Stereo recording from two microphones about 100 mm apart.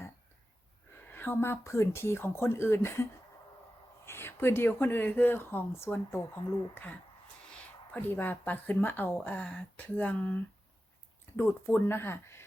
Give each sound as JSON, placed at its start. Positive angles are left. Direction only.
{"t": 1.0, "sound": "speech", "side_deg": 20}